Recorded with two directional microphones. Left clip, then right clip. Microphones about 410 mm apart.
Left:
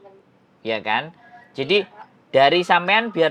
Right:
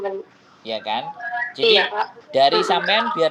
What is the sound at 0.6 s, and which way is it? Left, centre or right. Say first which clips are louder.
Speech: left 2 dB; left.